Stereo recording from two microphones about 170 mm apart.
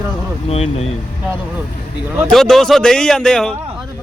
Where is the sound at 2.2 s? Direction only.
Centre (ahead or behind).